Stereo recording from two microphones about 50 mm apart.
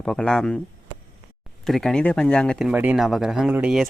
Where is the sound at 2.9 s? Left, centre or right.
Centre.